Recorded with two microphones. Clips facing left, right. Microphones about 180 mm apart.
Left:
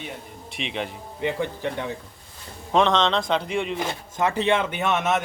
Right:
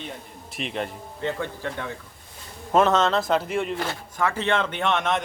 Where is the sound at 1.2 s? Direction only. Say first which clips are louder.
Left 3 dB; 20° left (ahead or behind).